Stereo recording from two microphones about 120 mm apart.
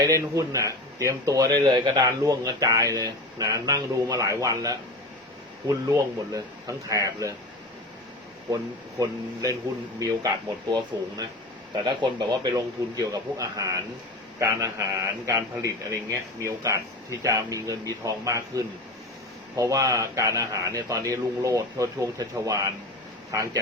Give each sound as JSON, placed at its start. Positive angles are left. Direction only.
{"t": 0.0, "sound": "speech", "side_deg": -30}
{"t": 5.9, "sound": "speech", "side_deg": -30}
{"t": 8.4, "sound": "speech", "side_deg": -30}
{"t": 10.7, "sound": "a man's voice", "side_deg": -35}